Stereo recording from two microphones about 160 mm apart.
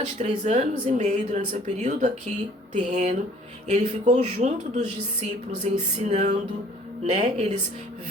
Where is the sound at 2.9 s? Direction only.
45° right (ahead or behind).